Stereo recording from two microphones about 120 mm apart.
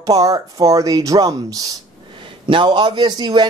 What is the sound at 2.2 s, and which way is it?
A man's voice, 45° right (ahead or behind).